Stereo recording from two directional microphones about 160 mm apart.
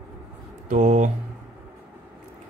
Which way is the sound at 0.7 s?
50° right (ahead or behind).